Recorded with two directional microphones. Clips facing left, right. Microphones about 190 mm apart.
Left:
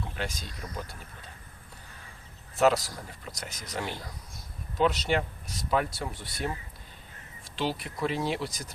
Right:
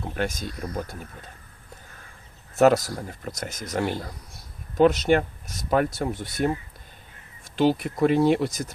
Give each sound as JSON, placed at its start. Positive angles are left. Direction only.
{"t": 0.2, "sound": "speech", "side_deg": -50}
{"t": 2.6, "sound": "speech", "side_deg": -45}